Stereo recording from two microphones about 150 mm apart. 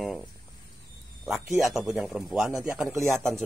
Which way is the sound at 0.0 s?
Centre (ahead or behind).